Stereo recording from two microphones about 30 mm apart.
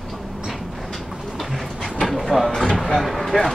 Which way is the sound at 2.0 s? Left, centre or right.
Centre.